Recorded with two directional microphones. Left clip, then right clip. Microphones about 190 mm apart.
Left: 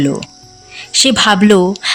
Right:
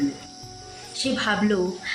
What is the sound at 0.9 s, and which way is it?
Speech, 60° left (ahead or behind).